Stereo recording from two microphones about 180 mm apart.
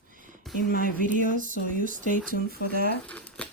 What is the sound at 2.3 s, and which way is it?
Speech, 60° right (ahead or behind).